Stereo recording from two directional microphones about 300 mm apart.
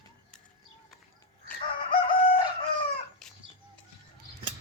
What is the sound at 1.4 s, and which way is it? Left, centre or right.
Chicken, centre.